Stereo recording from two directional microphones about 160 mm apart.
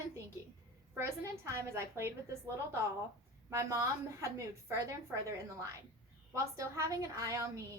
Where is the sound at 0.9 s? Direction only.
15° right (ahead or behind).